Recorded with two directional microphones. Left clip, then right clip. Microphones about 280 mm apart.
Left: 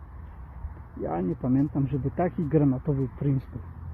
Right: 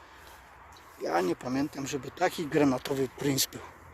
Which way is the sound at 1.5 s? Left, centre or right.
Centre.